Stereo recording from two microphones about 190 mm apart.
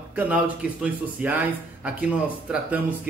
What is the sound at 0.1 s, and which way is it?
Speech, 5° right (ahead or behind).